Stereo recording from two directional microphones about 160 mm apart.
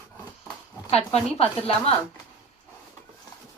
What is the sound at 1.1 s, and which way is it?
Speech, 40° left (ahead or behind).